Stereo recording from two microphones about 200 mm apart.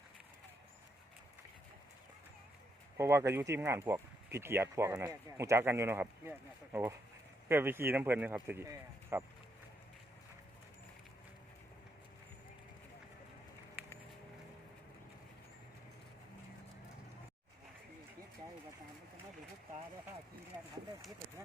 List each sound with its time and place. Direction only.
3.0 s speech: 15° right (ahead or behind)
7.4 s speech: 10° right (ahead or behind)